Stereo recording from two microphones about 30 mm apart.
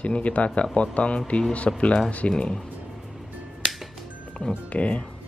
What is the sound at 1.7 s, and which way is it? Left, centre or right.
Speech, left.